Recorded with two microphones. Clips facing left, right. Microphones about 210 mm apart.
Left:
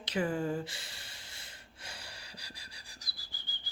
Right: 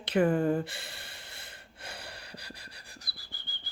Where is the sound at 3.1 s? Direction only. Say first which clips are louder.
Right 3 dB; 60° right (ahead or behind).